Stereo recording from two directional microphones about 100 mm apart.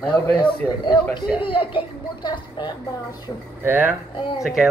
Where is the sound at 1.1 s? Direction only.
60° left (ahead or behind).